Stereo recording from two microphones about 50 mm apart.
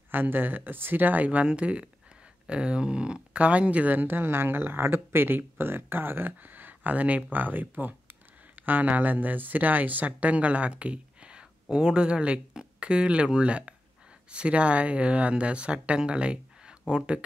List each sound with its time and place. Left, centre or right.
0.1 s speech: right; by 17.2 s centre